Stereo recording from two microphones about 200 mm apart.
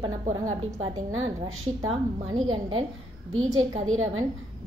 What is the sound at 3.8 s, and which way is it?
Speech, 90° right.